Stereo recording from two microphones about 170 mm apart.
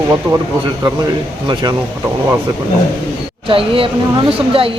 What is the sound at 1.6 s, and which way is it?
Speech, 25° right (ahead or behind).